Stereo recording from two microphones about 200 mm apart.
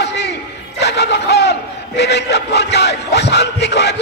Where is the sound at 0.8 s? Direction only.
55° left (ahead or behind).